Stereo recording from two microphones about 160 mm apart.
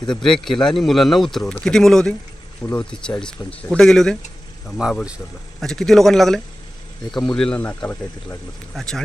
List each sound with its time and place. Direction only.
0.1 s a man's voice: 5° left (ahead or behind)